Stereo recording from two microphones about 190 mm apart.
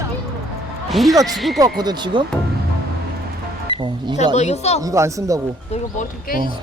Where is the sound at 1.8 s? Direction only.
20° right (ahead or behind).